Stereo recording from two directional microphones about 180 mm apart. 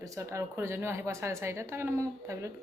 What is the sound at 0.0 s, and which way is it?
Speech, 15° right (ahead or behind).